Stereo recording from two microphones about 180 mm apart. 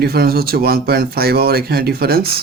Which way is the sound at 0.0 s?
60° right (ahead or behind).